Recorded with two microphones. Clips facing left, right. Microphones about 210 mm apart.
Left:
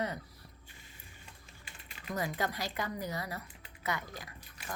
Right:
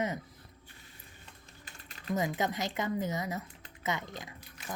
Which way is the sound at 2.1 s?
20° right (ahead or behind).